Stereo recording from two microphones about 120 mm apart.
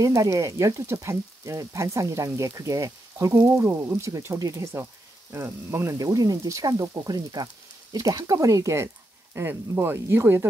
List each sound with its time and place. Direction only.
0.0 s speech: 25° right (ahead or behind)